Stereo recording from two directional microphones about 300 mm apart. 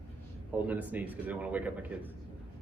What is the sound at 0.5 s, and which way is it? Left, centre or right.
A man's voice, centre.